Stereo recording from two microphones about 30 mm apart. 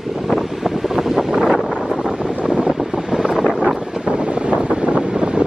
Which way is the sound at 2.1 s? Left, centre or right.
Right.